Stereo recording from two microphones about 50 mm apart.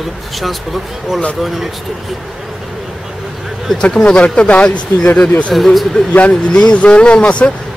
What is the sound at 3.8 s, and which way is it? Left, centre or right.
A man's voice, centre.